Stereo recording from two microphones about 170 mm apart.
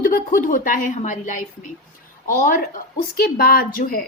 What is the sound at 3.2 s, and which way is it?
Speech, 60° left (ahead or behind).